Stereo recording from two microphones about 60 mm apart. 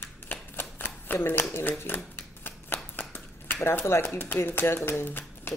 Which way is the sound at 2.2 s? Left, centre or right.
Left.